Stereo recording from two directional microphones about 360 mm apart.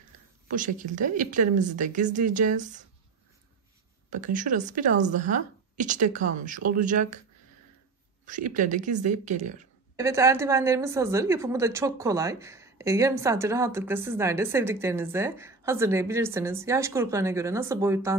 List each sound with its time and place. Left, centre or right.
0.5 s speech: right
4.1 s speech: right
8.3 s speech: right
9.9 s a woman's voice: centre